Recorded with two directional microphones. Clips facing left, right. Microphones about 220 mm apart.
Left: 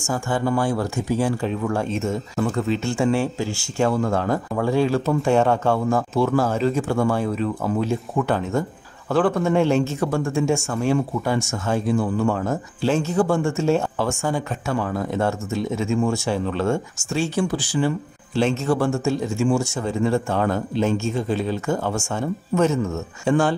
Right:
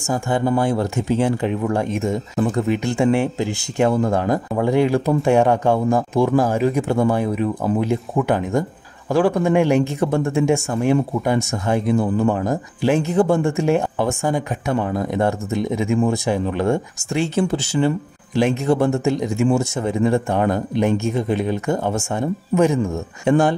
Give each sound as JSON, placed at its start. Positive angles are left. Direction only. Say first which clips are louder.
{"t": 0.0, "sound": "speech", "louder": "right 3 dB", "side_deg": -20}